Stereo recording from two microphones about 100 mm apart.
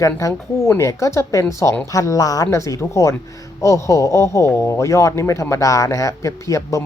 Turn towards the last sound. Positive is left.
turn(degrees=30)  # may be behind; listen again after turning